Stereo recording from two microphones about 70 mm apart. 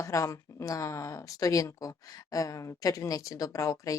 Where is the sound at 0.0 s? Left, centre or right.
Left.